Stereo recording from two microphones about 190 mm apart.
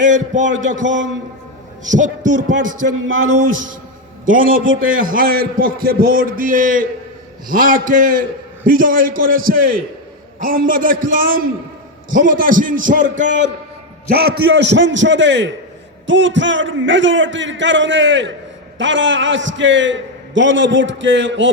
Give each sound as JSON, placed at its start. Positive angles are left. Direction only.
{"t": 0.0, "sound": "a man's voice", "side_deg": -40}
{"t": 0.9, "sound": "a man's voice", "side_deg": -75}
{"t": 1.9, "sound": "a man's voice", "side_deg": -40}
{"t": 2.8, "sound": "a man's voice", "side_deg": -90}
{"t": 4.3, "sound": "a man's voice", "side_deg": -45}
{"t": 4.6, "sound": "a man's voice", "side_deg": -90}
{"t": 4.9, "sound": "a man's voice", "side_deg": -45}
{"t": 14.1, "sound": "a man's voice", "side_deg": -55}